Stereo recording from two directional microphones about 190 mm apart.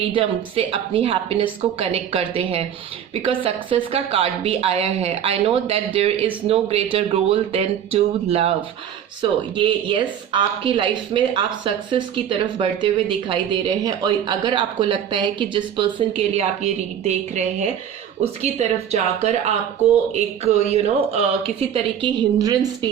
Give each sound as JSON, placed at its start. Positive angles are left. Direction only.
{"t": 0.0, "sound": "a woman's voice", "side_deg": -30}
{"t": 20.4, "sound": "a woman's voice", "side_deg": -35}
{"t": 22.4, "sound": "speech", "side_deg": -20}